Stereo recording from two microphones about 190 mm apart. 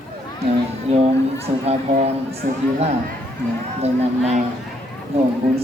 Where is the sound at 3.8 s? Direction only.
35° right (ahead or behind).